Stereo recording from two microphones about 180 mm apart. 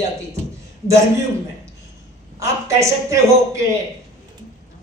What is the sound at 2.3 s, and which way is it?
Speech, 15° right (ahead or behind).